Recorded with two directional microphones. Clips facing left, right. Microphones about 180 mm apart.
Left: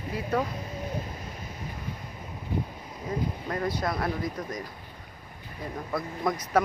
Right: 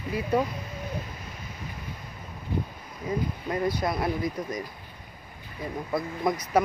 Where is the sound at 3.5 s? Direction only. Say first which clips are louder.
Right 3 dB; 15° right (ahead or behind).